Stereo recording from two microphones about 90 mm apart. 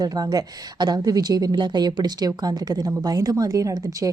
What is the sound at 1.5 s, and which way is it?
A woman's voice, 55° right (ahead or behind).